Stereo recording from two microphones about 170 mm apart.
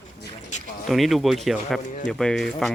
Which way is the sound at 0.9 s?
Centre (ahead or behind).